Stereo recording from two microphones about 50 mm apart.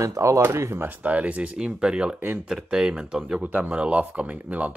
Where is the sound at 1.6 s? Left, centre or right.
Centre.